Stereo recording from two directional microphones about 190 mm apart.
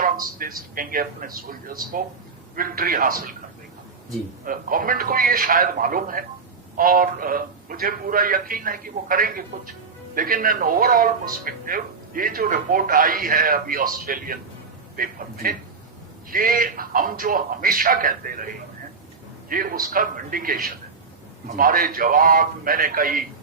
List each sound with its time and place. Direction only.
0.0 s speech: 50° right (ahead or behind)
4.4 s speech: 45° right (ahead or behind)